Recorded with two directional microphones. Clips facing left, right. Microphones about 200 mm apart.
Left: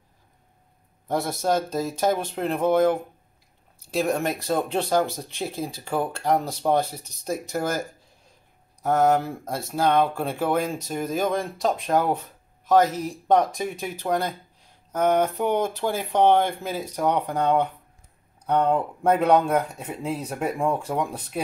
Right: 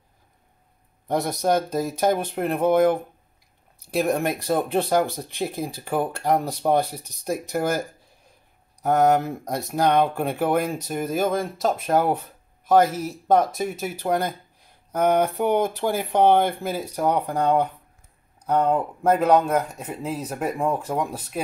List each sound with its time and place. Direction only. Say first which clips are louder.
1.0 s speech: right 2 dB; 15° right (ahead or behind)
8.8 s speech: right 1 dB; 15° right (ahead or behind)